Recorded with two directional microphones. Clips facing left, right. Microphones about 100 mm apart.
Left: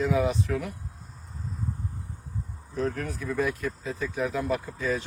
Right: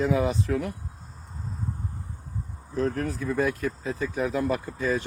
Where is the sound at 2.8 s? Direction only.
40° right (ahead or behind).